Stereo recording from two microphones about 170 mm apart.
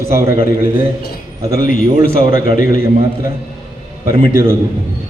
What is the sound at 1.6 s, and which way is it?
A man's voice, 55° left (ahead or behind).